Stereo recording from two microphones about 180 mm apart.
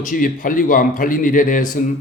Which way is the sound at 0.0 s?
50° left (ahead or behind).